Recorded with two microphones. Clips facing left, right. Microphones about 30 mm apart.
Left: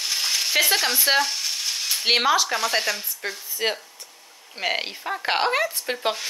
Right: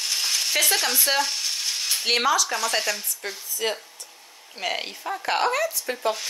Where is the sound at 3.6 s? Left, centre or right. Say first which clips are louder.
Left 2 dB; left.